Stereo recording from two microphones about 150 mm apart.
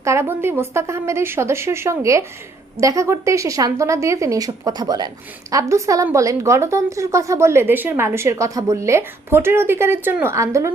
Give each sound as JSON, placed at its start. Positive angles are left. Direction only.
{"t": 0.0, "sound": "a woman's voice", "side_deg": -20}